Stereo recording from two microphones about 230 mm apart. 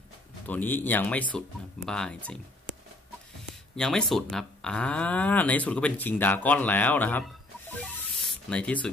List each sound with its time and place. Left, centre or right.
0.5 s speech: centre
3.7 s speech: centre